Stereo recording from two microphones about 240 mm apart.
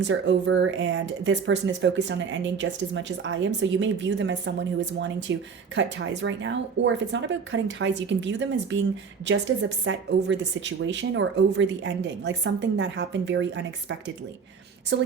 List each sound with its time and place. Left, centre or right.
0.0 s speech: right
14.9 s speech: right